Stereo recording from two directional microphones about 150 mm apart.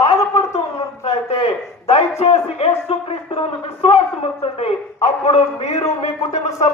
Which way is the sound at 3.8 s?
40° left (ahead or behind).